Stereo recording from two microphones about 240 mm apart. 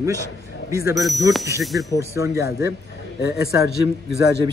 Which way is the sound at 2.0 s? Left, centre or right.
Centre.